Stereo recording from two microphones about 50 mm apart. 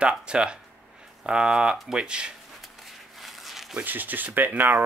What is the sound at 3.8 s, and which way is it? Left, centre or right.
Speech, right.